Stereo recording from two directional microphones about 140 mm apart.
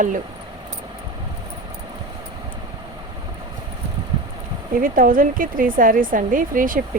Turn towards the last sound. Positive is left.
turn(degrees=-75)  # may be behind; listen again after turning